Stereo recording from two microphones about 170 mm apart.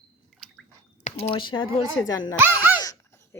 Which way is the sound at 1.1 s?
45° left (ahead or behind).